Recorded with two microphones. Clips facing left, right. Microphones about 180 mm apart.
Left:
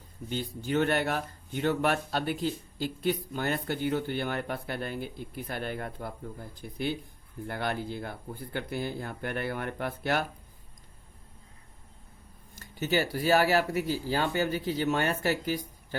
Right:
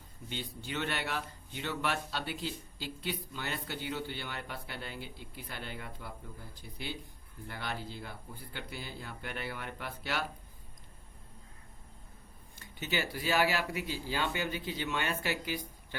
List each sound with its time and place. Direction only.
0.3 s speech: 45° left (ahead or behind)
12.5 s speech: 45° left (ahead or behind)